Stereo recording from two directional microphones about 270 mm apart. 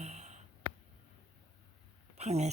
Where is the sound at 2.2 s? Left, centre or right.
Right.